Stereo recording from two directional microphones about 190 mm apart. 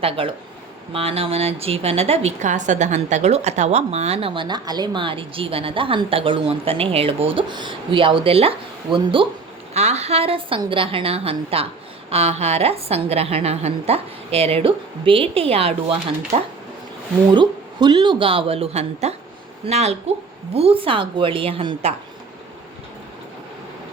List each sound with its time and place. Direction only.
0.2 s a woman's voice: 30° right (ahead or behind)
17.3 s a woman's voice: 25° right (ahead or behind)